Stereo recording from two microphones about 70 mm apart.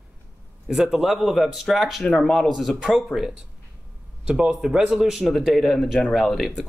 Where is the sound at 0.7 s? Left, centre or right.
Centre.